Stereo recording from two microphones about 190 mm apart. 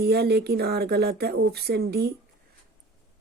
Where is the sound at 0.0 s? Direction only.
55° right (ahead or behind).